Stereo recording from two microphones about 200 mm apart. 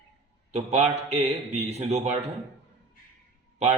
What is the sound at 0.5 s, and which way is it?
A man's voice, 35° right (ahead or behind).